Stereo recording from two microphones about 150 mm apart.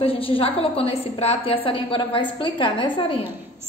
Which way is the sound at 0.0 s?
40° left (ahead or behind).